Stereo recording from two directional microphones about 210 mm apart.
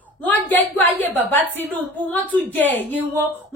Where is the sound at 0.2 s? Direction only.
10° left (ahead or behind).